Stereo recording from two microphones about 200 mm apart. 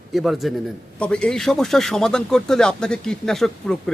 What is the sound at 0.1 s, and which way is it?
Speech, centre (ahead or behind).